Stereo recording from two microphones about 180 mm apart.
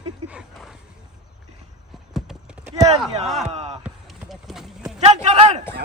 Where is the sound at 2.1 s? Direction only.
5° right (ahead or behind).